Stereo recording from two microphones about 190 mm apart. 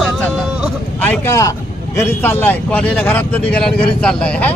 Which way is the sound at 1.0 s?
10° left (ahead or behind).